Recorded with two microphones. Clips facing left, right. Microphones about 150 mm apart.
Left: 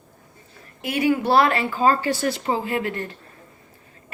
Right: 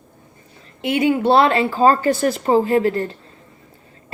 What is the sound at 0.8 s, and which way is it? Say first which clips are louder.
Speech: right 4 dB; 25° right (ahead or behind).